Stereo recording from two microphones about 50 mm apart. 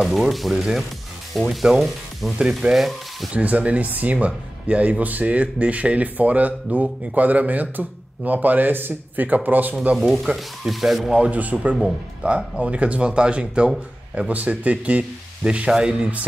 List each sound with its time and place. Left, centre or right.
0.3 s speech: centre
2.3 s speech: right
2.7 s speech: centre
3.3 s speech: right
9.9 s speech: centre
11.1 s speech: right